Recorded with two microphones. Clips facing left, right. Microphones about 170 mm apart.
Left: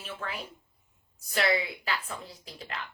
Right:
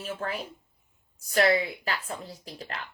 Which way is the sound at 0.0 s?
40° right (ahead or behind).